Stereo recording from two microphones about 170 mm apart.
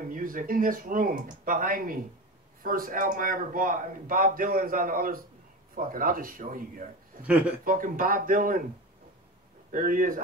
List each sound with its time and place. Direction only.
0.1 s a man's voice: 55° right (ahead or behind)
7.2 s speech: 10° right (ahead or behind)
7.6 s speech: 55° right (ahead or behind)
9.7 s speech: 50° right (ahead or behind)